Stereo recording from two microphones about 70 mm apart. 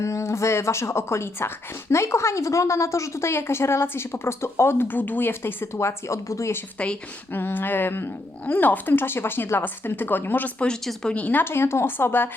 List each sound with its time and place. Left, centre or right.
0.0 s a woman's voice: left
5.7 s speech: left
7.3 s a woman's voice: left
10.7 s speech: centre
11.1 s a woman's voice: left